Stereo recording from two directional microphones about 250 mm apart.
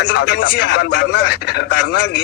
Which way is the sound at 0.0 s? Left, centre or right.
Left.